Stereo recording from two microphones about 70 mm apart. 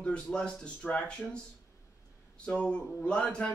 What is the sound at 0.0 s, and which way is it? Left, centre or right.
Speech, centre.